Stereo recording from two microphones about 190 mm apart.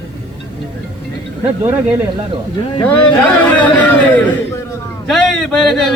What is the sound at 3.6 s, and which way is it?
A man's voice, 10° left (ahead or behind).